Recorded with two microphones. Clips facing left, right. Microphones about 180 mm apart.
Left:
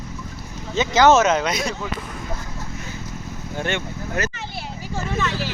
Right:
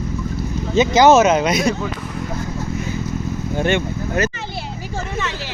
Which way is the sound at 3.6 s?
15° right (ahead or behind).